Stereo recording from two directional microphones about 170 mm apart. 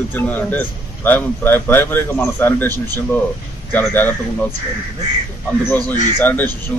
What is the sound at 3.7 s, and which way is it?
Speech, 10° left (ahead or behind).